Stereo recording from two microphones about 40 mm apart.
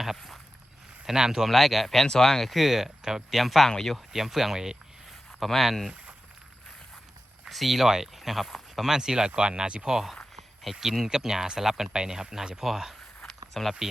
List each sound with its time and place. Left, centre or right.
1.0 s speech: centre
1.5 s speech: centre
2.0 s speech: centre
3.7 s speech: centre
3.9 s speech: centre
5.4 s speech: centre
7.4 s speech: centre
8.9 s speech: centre
10.3 s speech: centre